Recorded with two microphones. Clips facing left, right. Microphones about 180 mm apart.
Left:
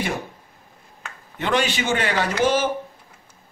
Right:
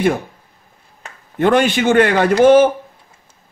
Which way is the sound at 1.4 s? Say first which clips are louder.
Right 9 dB; 50° right (ahead or behind).